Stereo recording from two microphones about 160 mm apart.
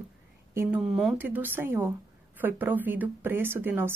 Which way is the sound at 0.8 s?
Centre (ahead or behind).